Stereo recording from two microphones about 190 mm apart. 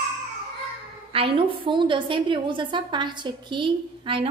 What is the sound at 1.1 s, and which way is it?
A woman's voice, 30° right (ahead or behind).